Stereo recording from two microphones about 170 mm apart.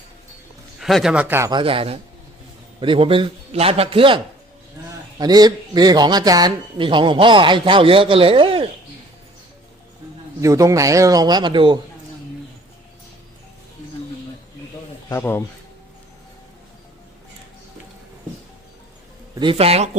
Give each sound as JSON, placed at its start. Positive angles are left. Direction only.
{"t": 0.8, "sound": "speech", "side_deg": 0}
{"t": 1.5, "sound": "a man's voice", "side_deg": -30}
{"t": 4.8, "sound": "a sound", "side_deg": -20}
{"t": 5.1, "sound": "speech", "side_deg": -25}
{"t": 10.4, "sound": "speech", "side_deg": -20}
{"t": 15.1, "sound": "speech", "side_deg": 15}
{"t": 19.3, "sound": "a man's voice", "side_deg": -30}